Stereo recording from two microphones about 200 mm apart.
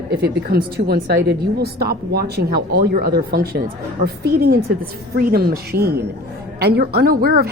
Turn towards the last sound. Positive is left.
turn(degrees=-50)  # may be behind; listen again after turning